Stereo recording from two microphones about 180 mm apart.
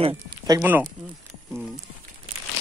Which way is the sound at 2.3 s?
35° right (ahead or behind).